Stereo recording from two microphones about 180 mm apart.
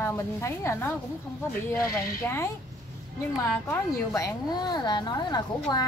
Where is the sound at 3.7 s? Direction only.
20° left (ahead or behind).